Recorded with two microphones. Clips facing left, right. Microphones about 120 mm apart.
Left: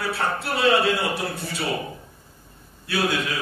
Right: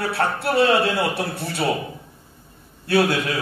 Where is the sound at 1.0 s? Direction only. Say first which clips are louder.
Right 3 dB; 60° right (ahead or behind).